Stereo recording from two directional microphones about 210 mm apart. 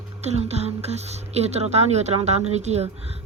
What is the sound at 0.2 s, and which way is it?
Speech, 30° right (ahead or behind).